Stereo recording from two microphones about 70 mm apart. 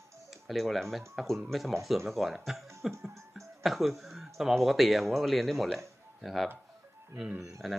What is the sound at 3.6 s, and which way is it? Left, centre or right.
Speech, centre.